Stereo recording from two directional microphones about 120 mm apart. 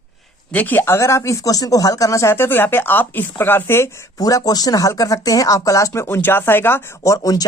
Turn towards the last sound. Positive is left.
turn(degrees=30)  # may be behind; listen again after turning